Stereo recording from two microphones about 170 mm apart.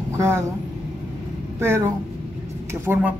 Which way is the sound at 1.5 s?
15° right (ahead or behind).